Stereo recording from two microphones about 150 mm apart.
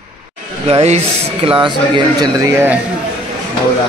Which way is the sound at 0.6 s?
45° right (ahead or behind).